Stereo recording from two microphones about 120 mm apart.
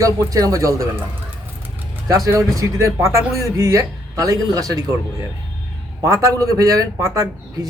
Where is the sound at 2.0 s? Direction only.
30° right (ahead or behind).